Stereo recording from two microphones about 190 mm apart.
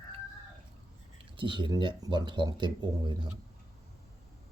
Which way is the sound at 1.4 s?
25° right (ahead or behind).